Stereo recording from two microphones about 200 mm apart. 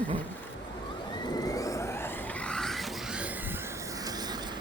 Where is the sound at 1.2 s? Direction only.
20° left (ahead or behind); by 3.6 s 5° right (ahead or behind).